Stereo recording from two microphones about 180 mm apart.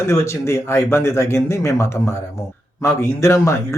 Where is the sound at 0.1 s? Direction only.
15° left (ahead or behind).